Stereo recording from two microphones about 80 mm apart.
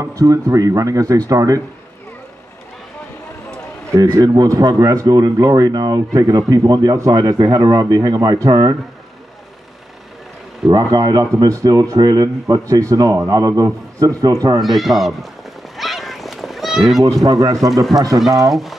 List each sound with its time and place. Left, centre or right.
0.0 s speech: right
4.2 s speech: right
10.8 s a man's voice: right
11.4 s speech: right
14.6 s speech: centre
15.8 s a sound: centre
17.2 s speech: right
18.5 s speech: centre